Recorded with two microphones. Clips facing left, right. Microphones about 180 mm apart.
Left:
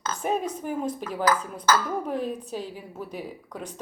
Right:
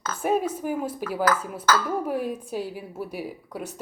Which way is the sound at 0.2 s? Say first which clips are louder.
Right 5 dB; 10° right (ahead or behind).